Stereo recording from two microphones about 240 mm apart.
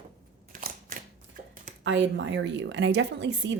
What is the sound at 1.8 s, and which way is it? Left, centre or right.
Speech, right.